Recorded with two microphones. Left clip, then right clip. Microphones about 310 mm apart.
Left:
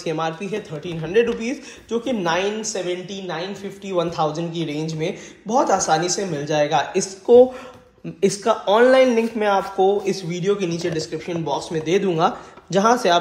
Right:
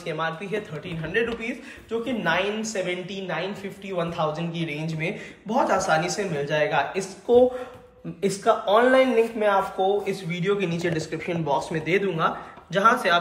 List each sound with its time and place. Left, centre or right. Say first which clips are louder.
0.0 s speech: left 4 dB; centre